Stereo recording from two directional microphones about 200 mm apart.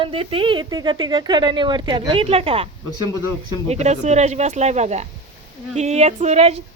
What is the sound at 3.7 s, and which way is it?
Speech, 35° right (ahead or behind).